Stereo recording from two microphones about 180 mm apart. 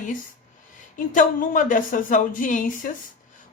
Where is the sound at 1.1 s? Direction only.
45° left (ahead or behind).